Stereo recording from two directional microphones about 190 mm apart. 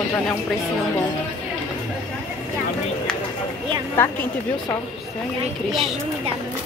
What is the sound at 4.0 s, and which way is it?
Speech, 10° left (ahead or behind).